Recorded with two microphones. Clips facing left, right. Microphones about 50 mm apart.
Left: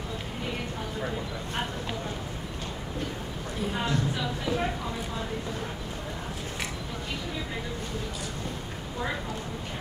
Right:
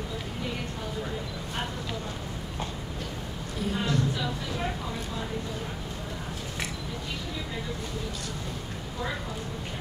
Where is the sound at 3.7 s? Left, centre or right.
Left.